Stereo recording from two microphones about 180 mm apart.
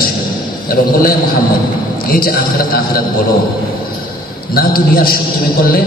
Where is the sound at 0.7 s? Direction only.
55° left (ahead or behind).